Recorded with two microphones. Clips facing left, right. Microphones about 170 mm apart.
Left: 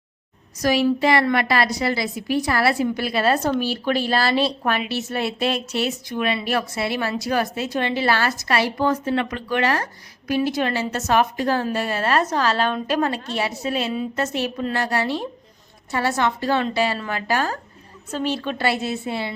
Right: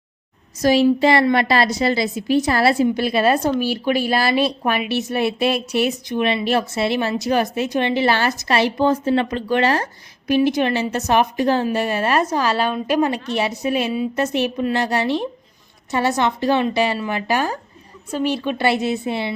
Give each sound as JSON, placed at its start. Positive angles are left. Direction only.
{"t": 0.6, "sound": "a woman's voice", "side_deg": -25}